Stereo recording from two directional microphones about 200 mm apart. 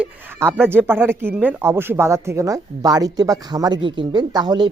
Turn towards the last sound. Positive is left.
turn(degrees=-20)  # may be behind; listen again after turning